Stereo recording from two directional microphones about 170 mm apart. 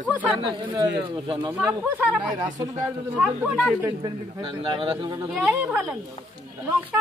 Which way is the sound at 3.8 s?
25° right (ahead or behind).